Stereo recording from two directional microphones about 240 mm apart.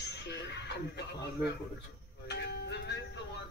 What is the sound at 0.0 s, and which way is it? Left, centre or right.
Speech, left.